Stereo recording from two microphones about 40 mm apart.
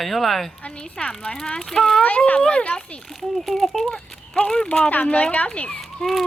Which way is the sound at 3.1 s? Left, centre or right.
Centre.